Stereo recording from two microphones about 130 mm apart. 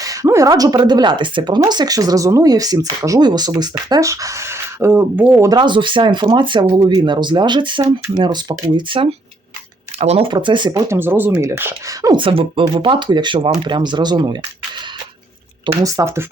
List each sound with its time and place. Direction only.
0.0 s speech: 25° right (ahead or behind)
5.5 s speech: 35° right (ahead or behind)
10.9 s speech: 15° right (ahead or behind)
12.2 s speech: 45° right (ahead or behind)
15.6 s speech: 25° right (ahead or behind)